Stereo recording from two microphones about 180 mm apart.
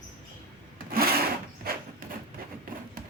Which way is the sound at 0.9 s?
55° right (ahead or behind).